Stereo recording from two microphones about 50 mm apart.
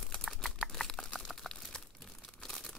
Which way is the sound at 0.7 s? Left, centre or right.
Centre.